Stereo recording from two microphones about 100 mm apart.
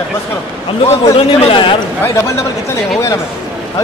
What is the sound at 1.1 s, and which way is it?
Speech, 55° left (ahead or behind).